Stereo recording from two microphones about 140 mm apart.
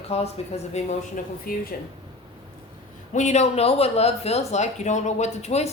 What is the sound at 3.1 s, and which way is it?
Speech, 55° left (ahead or behind).